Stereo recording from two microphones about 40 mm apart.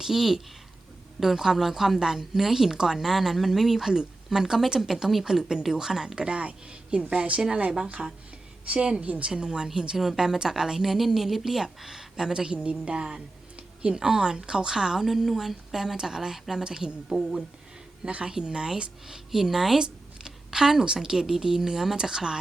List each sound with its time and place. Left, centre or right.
0.0 s a woman's voice: centre; by 9.3 s right
9.3 s a woman's voice: right